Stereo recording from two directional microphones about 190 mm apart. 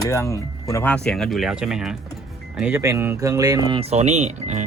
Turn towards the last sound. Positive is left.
turn(degrees=-40)  # may be behind; listen again after turning